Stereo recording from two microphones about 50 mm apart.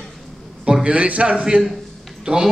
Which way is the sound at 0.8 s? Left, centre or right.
Right.